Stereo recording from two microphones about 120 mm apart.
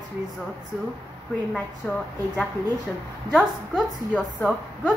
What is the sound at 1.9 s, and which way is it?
Speech, 15° left (ahead or behind).